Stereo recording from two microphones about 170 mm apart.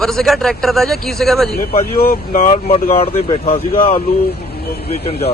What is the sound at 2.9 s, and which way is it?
Speech, 35° left (ahead or behind).